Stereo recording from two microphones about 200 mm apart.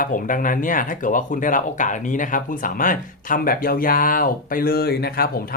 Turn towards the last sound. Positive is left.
turn(degrees=50)  # may be behind; listen again after turning